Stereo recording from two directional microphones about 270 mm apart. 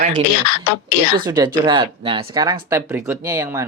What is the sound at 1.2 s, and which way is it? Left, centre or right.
Speech, centre.